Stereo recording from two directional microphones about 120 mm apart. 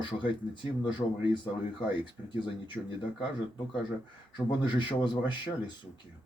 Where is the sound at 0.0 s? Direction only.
40° left (ahead or behind).